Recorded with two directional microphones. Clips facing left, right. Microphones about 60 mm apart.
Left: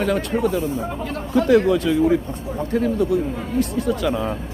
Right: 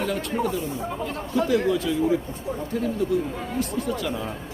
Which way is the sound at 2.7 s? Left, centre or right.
Left.